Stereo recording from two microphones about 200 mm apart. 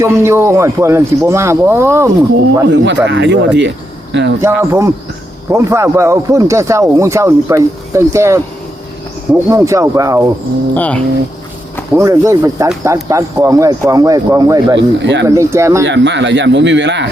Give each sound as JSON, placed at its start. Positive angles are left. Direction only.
{"t": 0.0, "sound": "speech", "side_deg": -15}
{"t": 2.6, "sound": "speech", "side_deg": -60}
{"t": 4.4, "sound": "speech", "side_deg": -15}
{"t": 10.8, "sound": "insect", "side_deg": 5}
{"t": 11.9, "sound": "speech", "side_deg": -15}
{"t": 14.8, "sound": "speech", "side_deg": -65}
{"t": 15.3, "sound": "speech", "side_deg": -15}
{"t": 15.8, "sound": "speech", "side_deg": -60}